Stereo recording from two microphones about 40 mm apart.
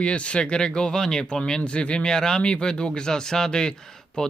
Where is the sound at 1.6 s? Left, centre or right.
Left.